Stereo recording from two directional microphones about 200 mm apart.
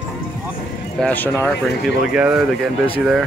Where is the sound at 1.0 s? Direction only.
5° left (ahead or behind).